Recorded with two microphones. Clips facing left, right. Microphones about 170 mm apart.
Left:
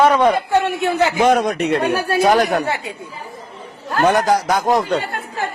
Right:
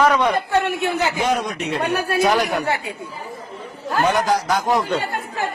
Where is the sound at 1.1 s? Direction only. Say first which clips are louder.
Left 6 dB; 55° left (ahead or behind).